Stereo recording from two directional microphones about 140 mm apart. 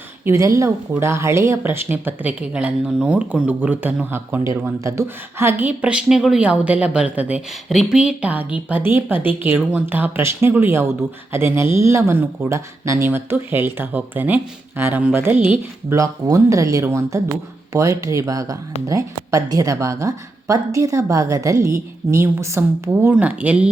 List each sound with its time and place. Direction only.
0.3 s a woman's voice: 20° right (ahead or behind)
16.0 s speech: 25° right (ahead or behind)